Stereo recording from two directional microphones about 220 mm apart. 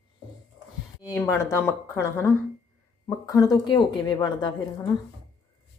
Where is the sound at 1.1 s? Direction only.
15° left (ahead or behind).